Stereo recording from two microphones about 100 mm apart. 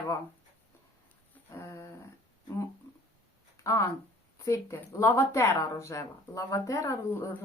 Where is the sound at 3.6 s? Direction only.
30° left (ahead or behind).